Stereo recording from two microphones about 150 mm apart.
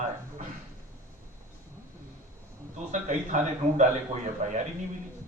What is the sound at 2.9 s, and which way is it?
A man's voice, 55° right (ahead or behind).